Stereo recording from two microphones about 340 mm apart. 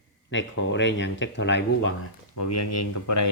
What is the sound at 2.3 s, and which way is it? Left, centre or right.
Speech, left.